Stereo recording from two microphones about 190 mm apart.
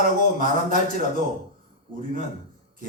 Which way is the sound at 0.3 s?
45° right (ahead or behind).